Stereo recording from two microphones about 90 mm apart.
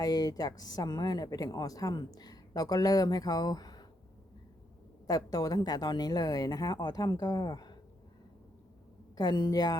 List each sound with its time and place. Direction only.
0.0 s speech: 45° left (ahead or behind)
5.0 s speech: 45° left (ahead or behind)
9.1 s speech: 50° left (ahead or behind)